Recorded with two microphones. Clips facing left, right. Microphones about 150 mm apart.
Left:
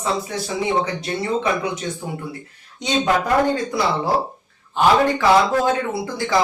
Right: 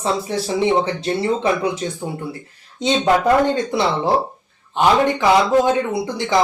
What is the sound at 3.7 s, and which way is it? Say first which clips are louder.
A man's voice: right 2 dB; 25° right (ahead or behind).